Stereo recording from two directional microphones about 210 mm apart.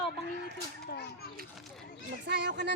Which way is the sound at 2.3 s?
55° right (ahead or behind).